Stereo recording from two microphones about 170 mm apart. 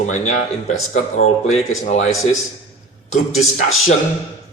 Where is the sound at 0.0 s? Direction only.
45° left (ahead or behind).